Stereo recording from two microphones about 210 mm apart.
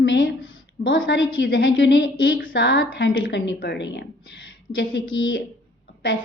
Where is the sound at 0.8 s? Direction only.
65° left (ahead or behind).